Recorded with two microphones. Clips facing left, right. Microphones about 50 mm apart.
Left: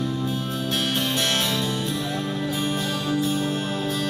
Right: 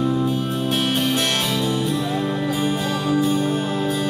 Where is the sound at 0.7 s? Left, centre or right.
Centre.